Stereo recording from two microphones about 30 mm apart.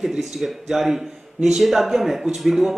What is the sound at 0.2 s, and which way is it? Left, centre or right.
A man's voice, centre.